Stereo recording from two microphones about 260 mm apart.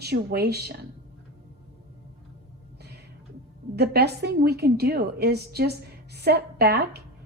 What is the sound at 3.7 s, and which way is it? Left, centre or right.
A woman's voice, right.